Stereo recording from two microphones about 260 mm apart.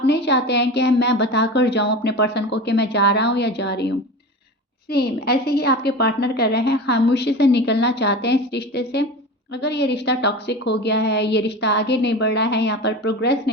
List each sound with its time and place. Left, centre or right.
0.0 s a woman's voice: left